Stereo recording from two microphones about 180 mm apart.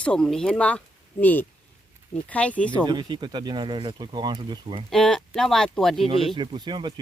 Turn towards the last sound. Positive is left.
turn(degrees=-25)  # may be behind; listen again after turning